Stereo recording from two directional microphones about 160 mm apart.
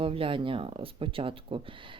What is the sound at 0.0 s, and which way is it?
Speech, 35° right (ahead or behind).